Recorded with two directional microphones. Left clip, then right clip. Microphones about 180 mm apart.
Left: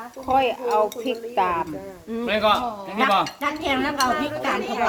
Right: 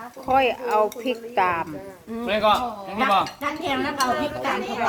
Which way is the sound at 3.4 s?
40° left (ahead or behind).